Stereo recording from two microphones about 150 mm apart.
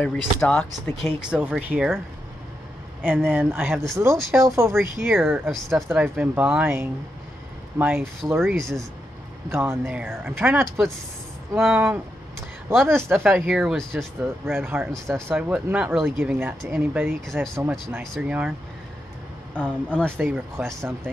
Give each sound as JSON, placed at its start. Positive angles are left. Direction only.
{"t": 0.0, "sound": "speech", "side_deg": 10}
{"t": 1.3, "sound": "speech", "side_deg": -10}
{"t": 3.1, "sound": "speech", "side_deg": -10}
{"t": 5.0, "sound": "speech", "side_deg": -5}
{"t": 5.9, "sound": "speech", "side_deg": -10}
{"t": 8.5, "sound": "speech", "side_deg": 0}
{"t": 9.5, "sound": "speech", "side_deg": -15}
{"t": 13.3, "sound": "speech", "side_deg": -5}
{"t": 14.4, "sound": "speech", "side_deg": -15}
{"t": 15.3, "sound": "speech", "side_deg": -10}
{"t": 19.5, "sound": "speech", "side_deg": 10}
{"t": 20.2, "sound": "speech", "side_deg": -10}